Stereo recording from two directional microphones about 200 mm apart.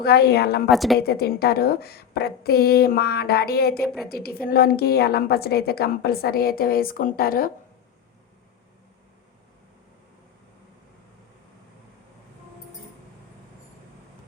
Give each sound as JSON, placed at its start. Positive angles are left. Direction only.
{"t": 0.0, "sound": "a woman's voice", "side_deg": 55}
{"t": 0.7, "sound": "a woman's voice", "side_deg": 0}
{"t": 0.9, "sound": "a woman's voice", "side_deg": 50}